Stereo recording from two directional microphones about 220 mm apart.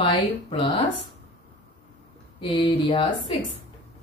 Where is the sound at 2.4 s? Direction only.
20° left (ahead or behind).